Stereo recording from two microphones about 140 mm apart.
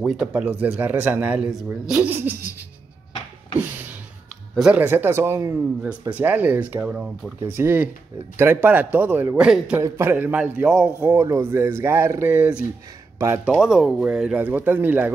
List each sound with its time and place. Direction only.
0.0 s speech: 5° right (ahead or behind)
4.6 s speech: 10° right (ahead or behind)
9.8 s speech: 20° right (ahead or behind)